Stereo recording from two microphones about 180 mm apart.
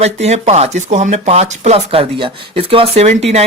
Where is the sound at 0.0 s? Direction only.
35° right (ahead or behind).